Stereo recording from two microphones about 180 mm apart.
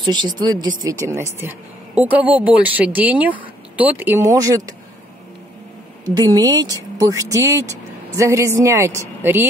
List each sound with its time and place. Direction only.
0.0 s a woman's voice: 25° right (ahead or behind)
6.1 s a woman's voice: 20° right (ahead or behind)